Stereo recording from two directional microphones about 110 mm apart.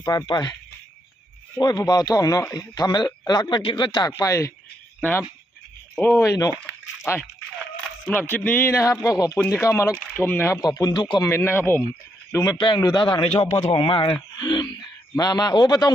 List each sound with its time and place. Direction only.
0.0 s speech: 40° left (ahead or behind)
1.5 s a man's voice: 35° left (ahead or behind)
4.2 s speech: 30° left (ahead or behind)
6.0 s speech: 25° left (ahead or behind)
6.6 s a sound: 10° left (ahead or behind)
8.1 s speech: 20° left (ahead or behind)
8.7 s speech: 30° left (ahead or behind)
10.6 s speech: 35° left (ahead or behind)
11.2 s speech: 20° left (ahead or behind)
12.3 s a man's voice: 30° left (ahead or behind)